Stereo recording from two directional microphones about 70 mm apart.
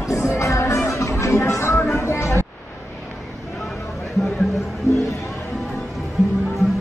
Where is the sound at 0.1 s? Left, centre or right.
Left.